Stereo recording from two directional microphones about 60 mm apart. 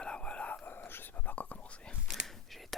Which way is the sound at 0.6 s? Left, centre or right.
Left.